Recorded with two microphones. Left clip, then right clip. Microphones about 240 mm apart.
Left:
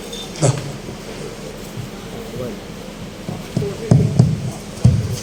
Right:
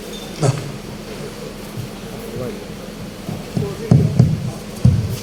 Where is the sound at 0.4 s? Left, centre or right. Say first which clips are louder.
Left 1 dB; left.